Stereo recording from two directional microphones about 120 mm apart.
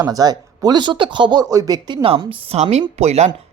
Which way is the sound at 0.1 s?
35° right (ahead or behind).